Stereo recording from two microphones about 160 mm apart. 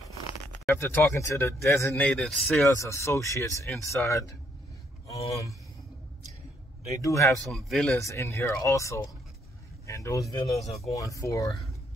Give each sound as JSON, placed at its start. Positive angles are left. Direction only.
{"t": 0.7, "sound": "speech", "side_deg": 15}
{"t": 2.6, "sound": "speech", "side_deg": 20}
{"t": 6.9, "sound": "speech", "side_deg": 20}
{"t": 7.4, "sound": "speech", "side_deg": 0}
{"t": 8.1, "sound": "speech", "side_deg": 15}